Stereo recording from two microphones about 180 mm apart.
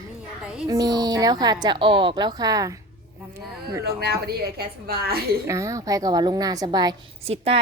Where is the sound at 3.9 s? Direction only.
60° right (ahead or behind).